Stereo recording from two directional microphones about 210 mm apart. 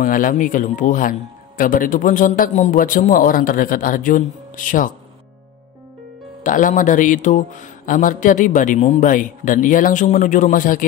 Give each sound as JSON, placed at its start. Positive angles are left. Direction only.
{"t": 0.0, "sound": "speech", "side_deg": 40}
{"t": 6.4, "sound": "speech", "side_deg": 40}